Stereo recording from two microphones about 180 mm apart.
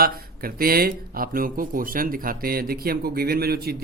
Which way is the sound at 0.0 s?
55° right (ahead or behind).